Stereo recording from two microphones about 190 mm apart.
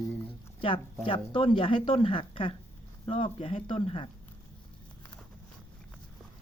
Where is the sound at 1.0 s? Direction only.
30° left (ahead or behind).